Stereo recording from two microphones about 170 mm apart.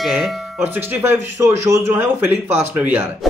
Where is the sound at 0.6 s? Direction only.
10° right (ahead or behind).